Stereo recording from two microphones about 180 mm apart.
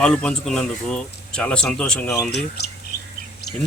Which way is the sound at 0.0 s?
5° left (ahead or behind).